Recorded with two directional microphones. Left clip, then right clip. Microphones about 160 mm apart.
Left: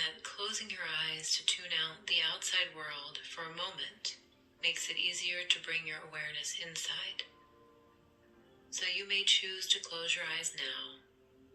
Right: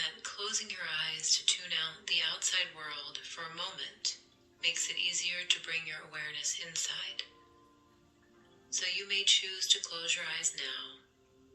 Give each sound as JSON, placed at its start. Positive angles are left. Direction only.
{"t": 0.0, "sound": "speech", "side_deg": 40}
{"t": 8.7, "sound": "speech", "side_deg": 40}